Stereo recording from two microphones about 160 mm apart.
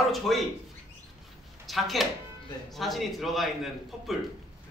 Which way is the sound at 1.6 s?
Centre (ahead or behind).